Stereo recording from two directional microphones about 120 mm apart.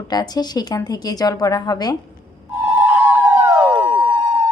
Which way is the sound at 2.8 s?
15° right (ahead or behind).